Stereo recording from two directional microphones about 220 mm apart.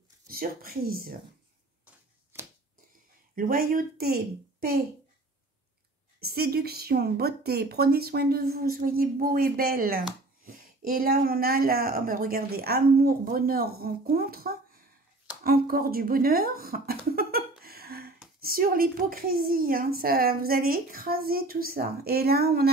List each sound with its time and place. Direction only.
0.3 s speech: 40° right (ahead or behind)
3.3 s a woman's voice: 40° right (ahead or behind)
6.2 s speech: 45° right (ahead or behind)